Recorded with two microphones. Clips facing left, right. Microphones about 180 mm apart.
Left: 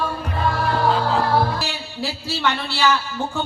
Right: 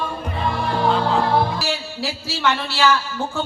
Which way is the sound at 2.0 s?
15° left (ahead or behind).